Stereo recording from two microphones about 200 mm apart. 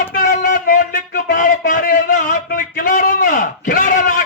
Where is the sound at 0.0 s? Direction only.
45° left (ahead or behind).